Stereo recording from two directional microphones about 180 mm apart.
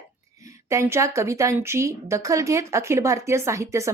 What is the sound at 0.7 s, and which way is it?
A woman's voice, 15° right (ahead or behind).